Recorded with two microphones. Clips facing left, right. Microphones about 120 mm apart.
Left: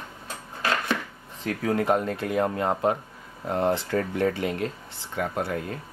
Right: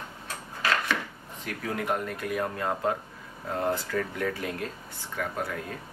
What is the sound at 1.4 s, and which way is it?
Speech, 30° left (ahead or behind).